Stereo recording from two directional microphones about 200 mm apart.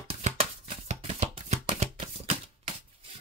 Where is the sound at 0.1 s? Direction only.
30° right (ahead or behind).